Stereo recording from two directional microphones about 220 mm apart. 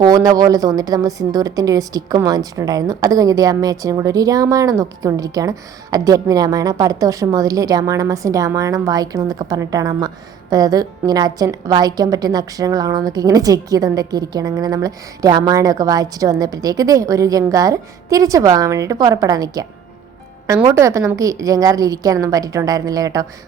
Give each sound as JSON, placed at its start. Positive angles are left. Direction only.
{"t": 0.0, "sound": "a woman's voice", "side_deg": -15}